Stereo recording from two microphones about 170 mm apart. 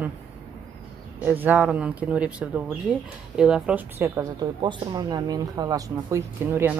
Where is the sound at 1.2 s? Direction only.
10° right (ahead or behind).